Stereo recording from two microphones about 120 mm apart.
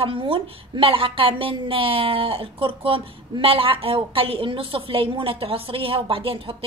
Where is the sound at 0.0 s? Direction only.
50° right (ahead or behind).